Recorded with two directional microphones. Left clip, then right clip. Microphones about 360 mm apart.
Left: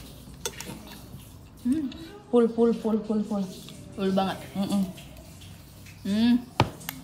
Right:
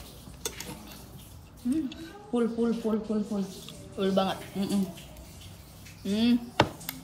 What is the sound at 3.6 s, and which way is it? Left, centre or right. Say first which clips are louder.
Speech: even; centre.